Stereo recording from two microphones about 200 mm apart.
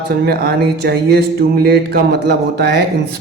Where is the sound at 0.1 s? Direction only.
50° right (ahead or behind).